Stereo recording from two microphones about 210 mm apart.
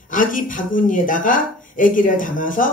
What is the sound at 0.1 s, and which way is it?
Speech, 40° left (ahead or behind).